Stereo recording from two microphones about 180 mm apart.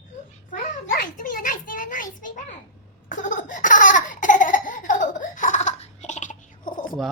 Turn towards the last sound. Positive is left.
turn(degrees=50)  # may be behind; listen again after turning